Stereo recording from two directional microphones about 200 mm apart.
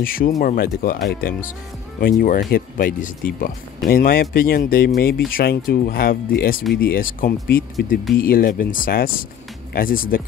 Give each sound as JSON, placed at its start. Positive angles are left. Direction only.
{"t": 0.0, "sound": "speech", "side_deg": 45}